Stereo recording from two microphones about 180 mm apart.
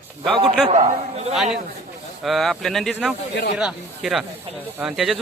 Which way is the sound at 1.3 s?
Centre (ahead or behind).